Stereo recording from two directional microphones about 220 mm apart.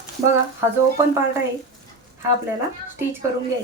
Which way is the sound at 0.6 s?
15° right (ahead or behind).